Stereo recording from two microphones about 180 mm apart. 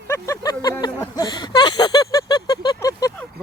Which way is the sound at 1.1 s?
20° left (ahead or behind).